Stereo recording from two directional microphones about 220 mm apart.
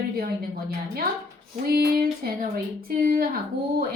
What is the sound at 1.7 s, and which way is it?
Music, 45° right (ahead or behind).